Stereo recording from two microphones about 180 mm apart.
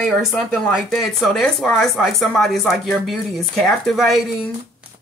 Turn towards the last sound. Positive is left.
turn(degrees=0)  # may be behind; listen again after turning